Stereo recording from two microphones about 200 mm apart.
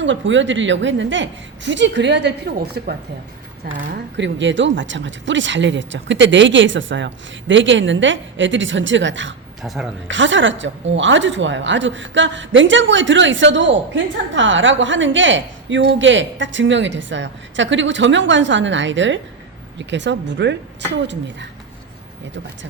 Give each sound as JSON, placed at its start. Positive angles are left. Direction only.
{"t": 0.0, "sound": "a woman's voice", "side_deg": -65}
{"t": 3.9, "sound": "a woman's voice", "side_deg": -65}
{"t": 9.6, "sound": "speech", "side_deg": 0}
{"t": 10.1, "sound": "a woman's voice", "side_deg": -70}